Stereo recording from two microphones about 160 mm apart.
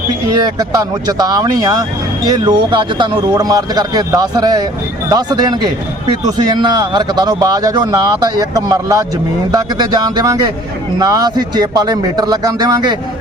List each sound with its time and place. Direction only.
0.3 s speech: 25° right (ahead or behind)